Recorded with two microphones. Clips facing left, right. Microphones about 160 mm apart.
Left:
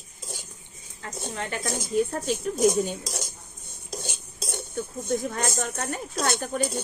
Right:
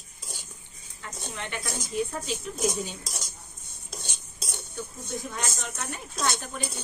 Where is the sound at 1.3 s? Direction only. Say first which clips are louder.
Left 5 dB; 40° left (ahead or behind).